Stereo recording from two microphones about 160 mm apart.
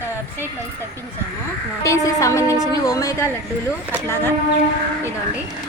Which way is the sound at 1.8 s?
20° left (ahead or behind).